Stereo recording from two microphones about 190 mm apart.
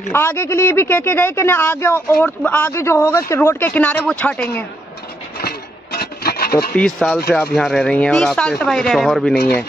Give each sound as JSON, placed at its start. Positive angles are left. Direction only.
{"t": 0.1, "sound": "speech", "side_deg": 15}
{"t": 5.9, "sound": "rub", "side_deg": 55}
{"t": 6.7, "sound": "speech", "side_deg": 5}